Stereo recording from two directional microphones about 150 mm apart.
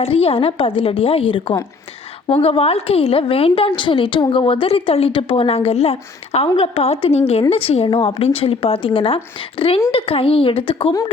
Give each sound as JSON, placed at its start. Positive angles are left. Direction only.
{"t": 0.0, "sound": "a woman's voice", "side_deg": 40}